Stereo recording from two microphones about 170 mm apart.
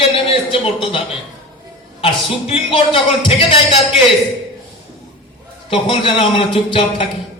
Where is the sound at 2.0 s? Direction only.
35° left (ahead or behind).